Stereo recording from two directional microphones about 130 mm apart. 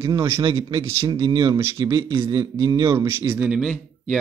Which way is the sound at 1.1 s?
40° right (ahead or behind).